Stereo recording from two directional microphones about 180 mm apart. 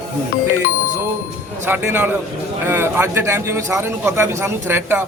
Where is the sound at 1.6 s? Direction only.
10° right (ahead or behind).